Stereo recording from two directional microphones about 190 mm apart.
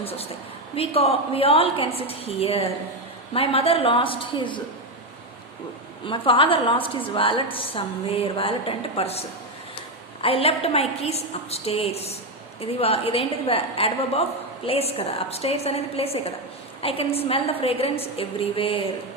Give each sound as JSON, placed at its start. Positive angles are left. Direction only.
{"t": 0.0, "sound": "a woman's voice", "side_deg": 30}
{"t": 6.1, "sound": "a woman's voice", "side_deg": 25}